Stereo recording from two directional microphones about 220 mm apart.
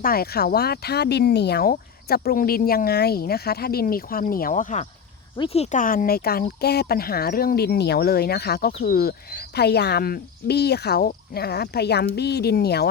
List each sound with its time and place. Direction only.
0.0 s speech: 45° left (ahead or behind)